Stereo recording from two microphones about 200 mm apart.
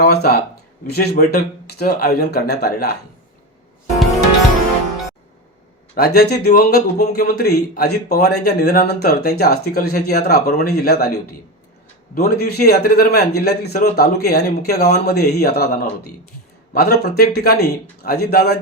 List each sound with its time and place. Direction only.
0.0 s a man's voice: 50° left (ahead or behind)
6.0 s a man's voice: 55° left (ahead or behind)